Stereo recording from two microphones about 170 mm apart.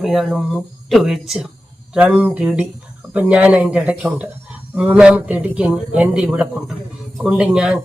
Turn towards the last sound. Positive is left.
turn(degrees=-5)  # may be behind; listen again after turning